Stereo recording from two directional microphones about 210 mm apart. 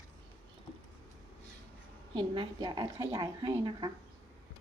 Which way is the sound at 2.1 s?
20° right (ahead or behind).